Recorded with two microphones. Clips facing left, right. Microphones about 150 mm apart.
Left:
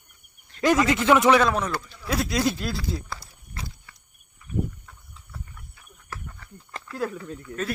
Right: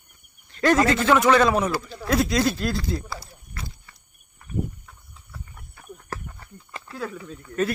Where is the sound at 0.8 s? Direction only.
15° left (ahead or behind).